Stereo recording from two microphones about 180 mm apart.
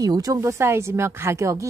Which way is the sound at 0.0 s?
20° right (ahead or behind).